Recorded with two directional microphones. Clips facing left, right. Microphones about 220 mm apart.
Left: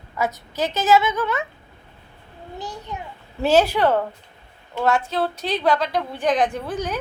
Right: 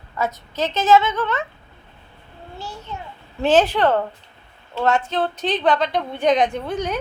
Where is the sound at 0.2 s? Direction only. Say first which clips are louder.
Even; 15° left (ahead or behind).